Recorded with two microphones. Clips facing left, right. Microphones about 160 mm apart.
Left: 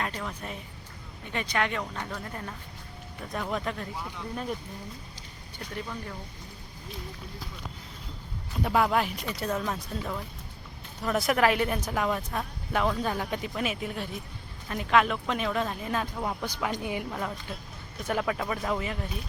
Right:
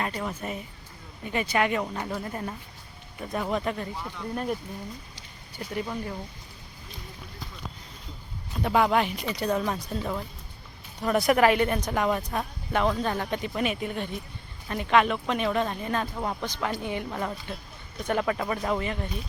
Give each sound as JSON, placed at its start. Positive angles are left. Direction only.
{"t": 0.0, "sound": "speech", "side_deg": -10}
{"t": 5.8, "sound": "speech", "side_deg": -15}
{"t": 8.6, "sound": "speech", "side_deg": 0}
{"t": 17.1, "sound": "speech", "side_deg": -5}